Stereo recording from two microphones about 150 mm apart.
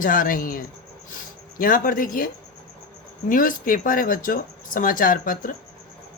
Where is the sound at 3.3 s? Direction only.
65° left (ahead or behind).